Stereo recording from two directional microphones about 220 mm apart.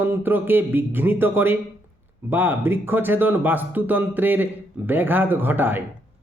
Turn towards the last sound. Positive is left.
turn(degrees=-10)  # may be behind; listen again after turning